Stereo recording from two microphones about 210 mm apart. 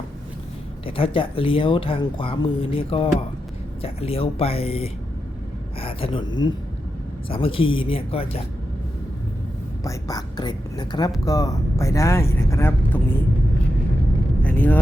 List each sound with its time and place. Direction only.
0.9 s speech: 25° left (ahead or behind)
9.8 s speech: 15° left (ahead or behind)
14.4 s vehicle: 10° left (ahead or behind)